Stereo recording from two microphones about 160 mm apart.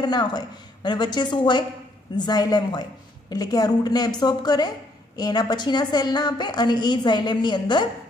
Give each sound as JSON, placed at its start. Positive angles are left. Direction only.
{"t": 0.0, "sound": "a woman's voice", "side_deg": 25}